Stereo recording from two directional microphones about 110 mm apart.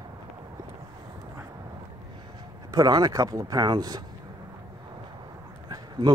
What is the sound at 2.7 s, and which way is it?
Speech, 35° right (ahead or behind).